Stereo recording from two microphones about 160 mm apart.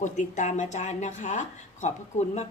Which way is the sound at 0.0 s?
50° left (ahead or behind).